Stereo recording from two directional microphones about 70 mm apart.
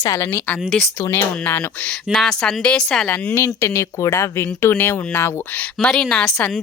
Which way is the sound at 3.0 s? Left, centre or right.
Left.